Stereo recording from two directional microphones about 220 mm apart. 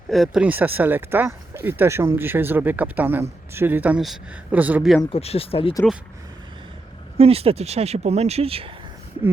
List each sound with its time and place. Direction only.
0.1 s speech: centre (ahead or behind)
5.0 s speech: 25° left (ahead or behind)
7.2 s speech: 25° right (ahead or behind)